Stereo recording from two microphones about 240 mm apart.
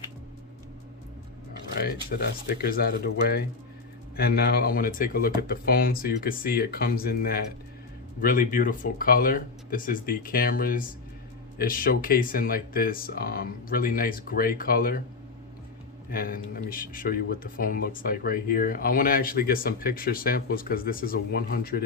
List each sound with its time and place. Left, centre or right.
1.8 s speech: left
16.0 s speech: left